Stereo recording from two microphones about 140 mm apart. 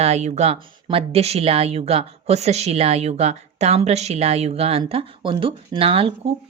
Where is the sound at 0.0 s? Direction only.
50° right (ahead or behind).